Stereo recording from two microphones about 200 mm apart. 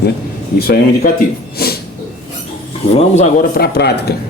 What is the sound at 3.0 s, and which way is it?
Speech, 35° left (ahead or behind).